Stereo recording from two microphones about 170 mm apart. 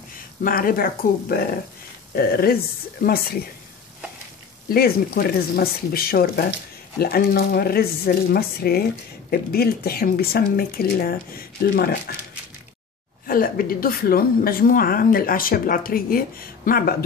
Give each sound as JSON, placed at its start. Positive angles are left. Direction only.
{"t": 0.4, "sound": "a woman's voice", "side_deg": 55}
{"t": 4.6, "sound": "a woman's voice", "side_deg": 60}
{"t": 13.3, "sound": "a woman's voice", "side_deg": 55}